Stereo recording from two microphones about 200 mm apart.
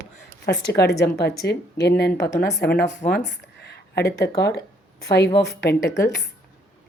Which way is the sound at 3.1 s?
55° left (ahead or behind).